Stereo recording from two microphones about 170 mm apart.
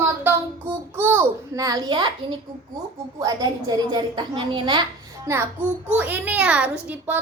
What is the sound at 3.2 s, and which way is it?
A child's voice, 25° right (ahead or behind).